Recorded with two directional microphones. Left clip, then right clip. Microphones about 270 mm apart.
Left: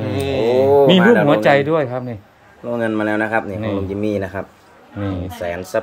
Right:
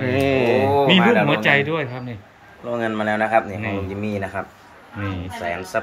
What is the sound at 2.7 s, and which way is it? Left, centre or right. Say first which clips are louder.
Speech: left 3 dB; left.